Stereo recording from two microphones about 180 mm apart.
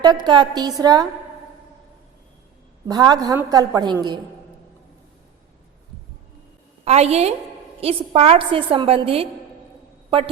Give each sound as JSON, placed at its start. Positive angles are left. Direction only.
{"t": 0.3, "sound": "a woman's voice", "side_deg": -25}
{"t": 2.8, "sound": "a woman's voice", "side_deg": -25}
{"t": 6.8, "sound": "a woman's voice", "side_deg": -35}